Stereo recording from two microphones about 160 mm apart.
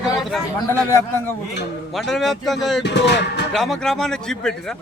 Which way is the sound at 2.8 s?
90° left.